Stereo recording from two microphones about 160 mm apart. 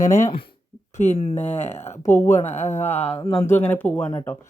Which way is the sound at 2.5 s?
45° left (ahead or behind).